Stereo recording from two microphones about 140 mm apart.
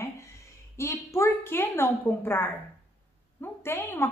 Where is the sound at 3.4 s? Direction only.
15° left (ahead or behind).